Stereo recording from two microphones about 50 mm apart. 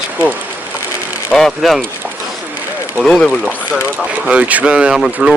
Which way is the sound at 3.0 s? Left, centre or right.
Centre.